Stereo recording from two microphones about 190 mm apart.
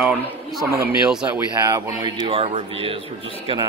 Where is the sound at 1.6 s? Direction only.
20° right (ahead or behind).